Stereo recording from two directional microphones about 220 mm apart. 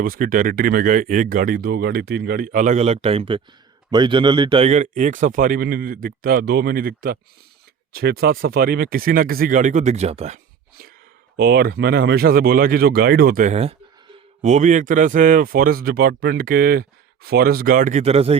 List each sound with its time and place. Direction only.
0.0 s speech: 40° right (ahead or behind)